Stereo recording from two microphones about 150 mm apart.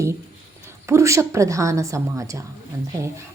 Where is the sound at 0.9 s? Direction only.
20° right (ahead or behind).